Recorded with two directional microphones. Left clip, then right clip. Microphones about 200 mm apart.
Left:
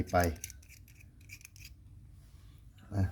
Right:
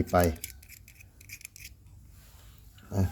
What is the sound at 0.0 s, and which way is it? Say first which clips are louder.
Speech: right 5 dB; 15° right (ahead or behind).